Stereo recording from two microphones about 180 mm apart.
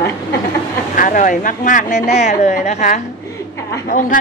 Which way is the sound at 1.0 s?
50° left (ahead or behind).